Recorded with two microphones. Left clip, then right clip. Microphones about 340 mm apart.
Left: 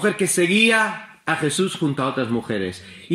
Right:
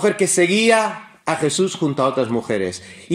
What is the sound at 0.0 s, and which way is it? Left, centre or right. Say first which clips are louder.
A man's voice: right 3 dB; centre.